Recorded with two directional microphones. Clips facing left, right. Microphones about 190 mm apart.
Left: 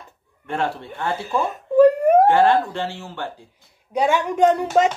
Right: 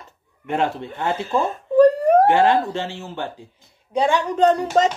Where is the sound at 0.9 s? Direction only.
15° right (ahead or behind).